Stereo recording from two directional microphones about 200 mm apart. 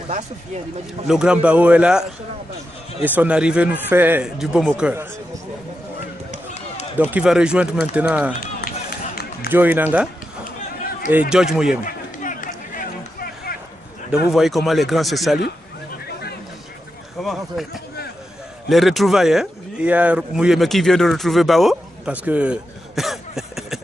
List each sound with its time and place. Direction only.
1.0 s speech: 5° right (ahead or behind)
7.0 s speech: 5° right (ahead or behind)
9.5 s speech: 10° right (ahead or behind)
11.1 s speech: 5° right (ahead or behind)
11.8 s a sound: 40° left (ahead or behind)
14.1 s speech: centre (ahead or behind)
17.2 s speech: centre (ahead or behind)